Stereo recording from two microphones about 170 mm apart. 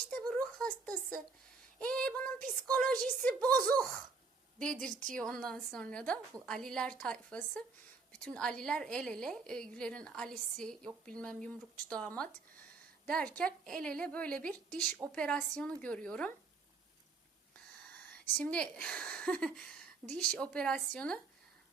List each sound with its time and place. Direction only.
0.1 s a sound: 5° left (ahead or behind)
1.8 s a woman's voice: 5° left (ahead or behind)
4.9 s a woman's voice: 50° right (ahead or behind)
5.1 s a woman's voice: 5° left (ahead or behind)
18.3 s a woman's voice: 5° left (ahead or behind)